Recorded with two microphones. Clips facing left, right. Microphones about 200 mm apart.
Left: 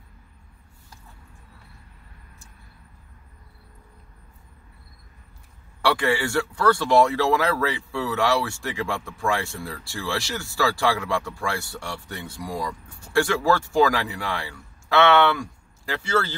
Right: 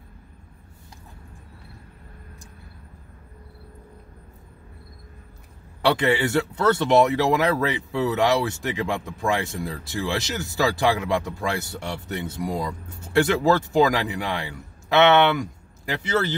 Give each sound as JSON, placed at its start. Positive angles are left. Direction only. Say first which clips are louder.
{"t": 5.8, "sound": "speech", "louder": "right 2 dB", "side_deg": -20}